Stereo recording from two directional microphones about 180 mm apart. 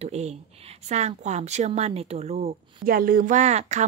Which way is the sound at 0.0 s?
35° right (ahead or behind).